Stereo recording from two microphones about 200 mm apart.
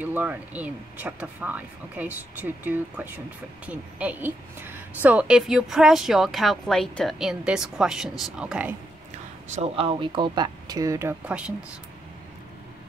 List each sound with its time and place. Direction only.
0.0 s a woman's voice: 10° right (ahead or behind)
9.5 s speech: 30° right (ahead or behind); by 11.5 s 5° right (ahead or behind)